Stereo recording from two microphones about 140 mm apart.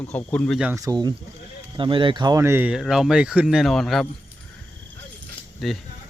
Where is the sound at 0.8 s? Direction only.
25° right (ahead or behind).